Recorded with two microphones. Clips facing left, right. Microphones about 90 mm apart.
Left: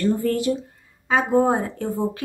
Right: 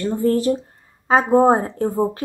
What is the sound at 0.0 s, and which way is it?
Speech, 20° right (ahead or behind).